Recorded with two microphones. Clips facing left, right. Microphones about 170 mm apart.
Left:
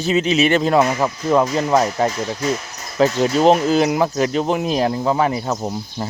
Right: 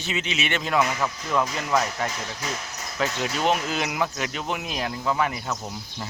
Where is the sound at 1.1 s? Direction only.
50° left (ahead or behind).